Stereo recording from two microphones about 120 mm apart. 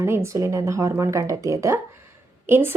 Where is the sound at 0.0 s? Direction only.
20° right (ahead or behind).